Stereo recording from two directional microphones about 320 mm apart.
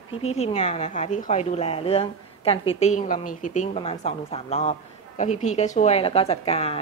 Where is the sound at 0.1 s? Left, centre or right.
Centre.